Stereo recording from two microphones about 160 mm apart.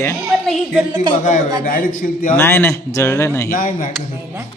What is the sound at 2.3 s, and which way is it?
A man's voice, 15° left (ahead or behind).